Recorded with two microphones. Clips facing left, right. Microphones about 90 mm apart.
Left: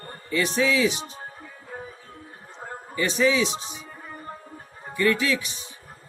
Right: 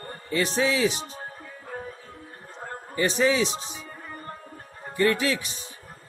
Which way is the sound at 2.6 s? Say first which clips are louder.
Even; 10° left (ahead or behind).